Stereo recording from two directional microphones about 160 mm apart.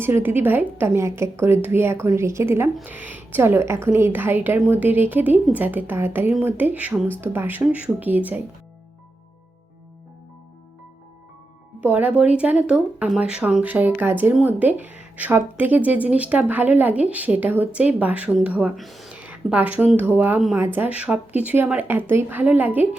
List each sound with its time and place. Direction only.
0.0 s speech: 15° right (ahead or behind)
11.8 s speech: 10° right (ahead or behind)